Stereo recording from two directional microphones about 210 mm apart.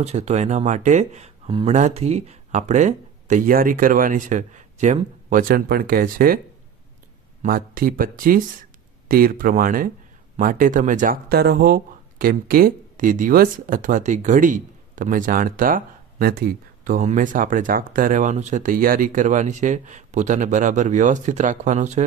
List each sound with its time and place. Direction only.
0.0 s speech: 30° right (ahead or behind)
7.4 s speech: 40° right (ahead or behind)